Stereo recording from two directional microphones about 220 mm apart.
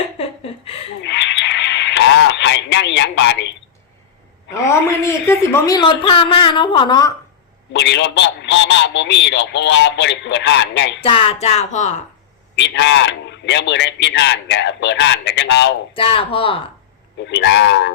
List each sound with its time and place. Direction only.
0.2 s a sound: 25° left (ahead or behind)
1.0 s radio: 55° left (ahead or behind)
4.5 s a woman's voice: 10° left (ahead or behind)
7.7 s a man's voice: 55° left (ahead or behind)
11.0 s a woman's voice: 25° left (ahead or behind)
12.5 s a man's voice: 55° left (ahead or behind)
15.9 s a woman's voice: 25° left (ahead or behind)
17.2 s a man's voice: 50° left (ahead or behind)